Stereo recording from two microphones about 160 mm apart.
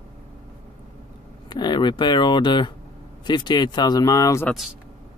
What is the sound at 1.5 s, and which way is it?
Speech, 30° left (ahead or behind).